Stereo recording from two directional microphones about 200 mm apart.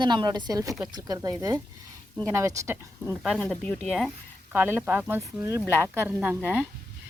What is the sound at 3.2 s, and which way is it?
Speech, centre (ahead or behind).